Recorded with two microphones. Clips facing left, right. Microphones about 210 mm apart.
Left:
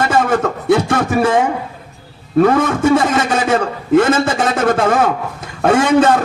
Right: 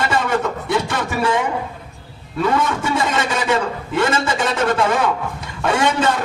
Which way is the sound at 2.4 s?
50° left (ahead or behind).